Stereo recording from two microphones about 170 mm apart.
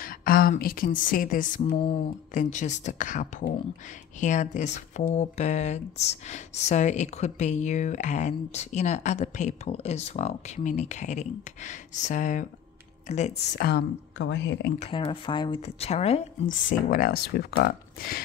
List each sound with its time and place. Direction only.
0.0 s speech: 60° left (ahead or behind)
13.6 s speech: 80° left
14.8 s speech: 30° left (ahead or behind)
16.6 s speech: 60° left (ahead or behind)